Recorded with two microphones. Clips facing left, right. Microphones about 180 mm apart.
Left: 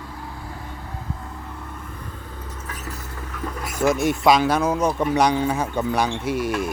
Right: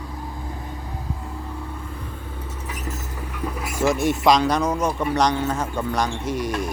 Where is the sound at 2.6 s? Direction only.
15° right (ahead or behind).